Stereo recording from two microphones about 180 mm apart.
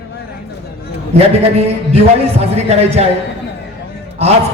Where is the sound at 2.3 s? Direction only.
35° right (ahead or behind).